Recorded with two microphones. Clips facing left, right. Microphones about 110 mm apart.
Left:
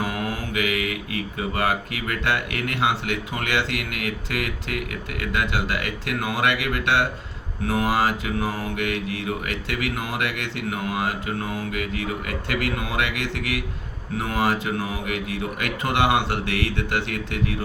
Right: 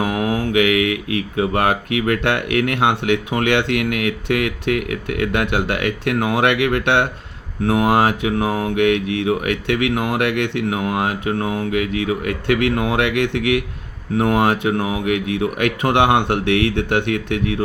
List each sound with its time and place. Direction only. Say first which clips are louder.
0.0 s music: right 8 dB; 60° right (ahead or behind)